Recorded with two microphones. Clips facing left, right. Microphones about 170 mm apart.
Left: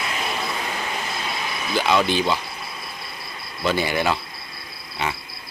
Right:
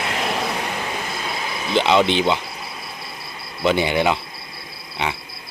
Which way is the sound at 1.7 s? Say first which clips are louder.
Right 3 dB; 20° right (ahead or behind).